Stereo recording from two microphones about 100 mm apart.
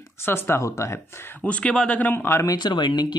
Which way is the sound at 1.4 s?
10° left (ahead or behind).